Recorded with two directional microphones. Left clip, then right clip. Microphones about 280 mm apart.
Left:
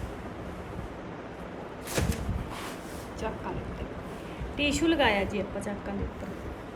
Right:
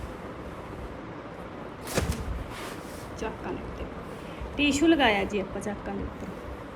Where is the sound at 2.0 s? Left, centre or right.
Right.